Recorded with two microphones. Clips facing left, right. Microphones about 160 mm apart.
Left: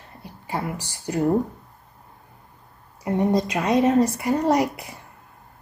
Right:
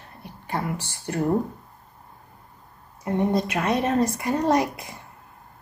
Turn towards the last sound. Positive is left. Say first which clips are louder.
# left 1 dB
turn(degrees=10)  # may be behind; listen again after turning